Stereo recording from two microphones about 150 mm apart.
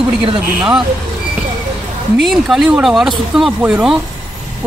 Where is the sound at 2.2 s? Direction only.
Centre (ahead or behind).